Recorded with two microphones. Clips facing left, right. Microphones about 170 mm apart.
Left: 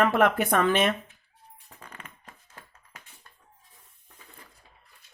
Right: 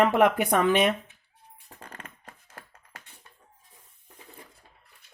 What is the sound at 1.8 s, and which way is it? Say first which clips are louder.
Music: right 2 dB; 40° right (ahead or behind).